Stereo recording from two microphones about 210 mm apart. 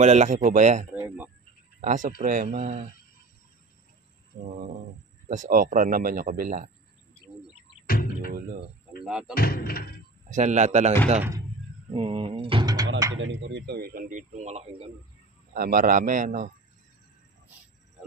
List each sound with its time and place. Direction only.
0.0 s speech: 35° right (ahead or behind)
0.9 s a sound: 10° right (ahead or behind)
1.8 s speech: 35° right (ahead or behind)
4.4 s speech: 35° right (ahead or behind)
7.8 s a sound: 45° left (ahead or behind)
9.3 s speech: 45° left (ahead or behind)
10.3 s speech: 35° right (ahead or behind)
11.1 s speech: 15° right (ahead or behind)
11.9 s speech: 25° right (ahead or behind)
13.2 s speech: 60° right (ahead or behind); by 14.9 s 25° right (ahead or behind)
15.5 s speech: 40° right (ahead or behind)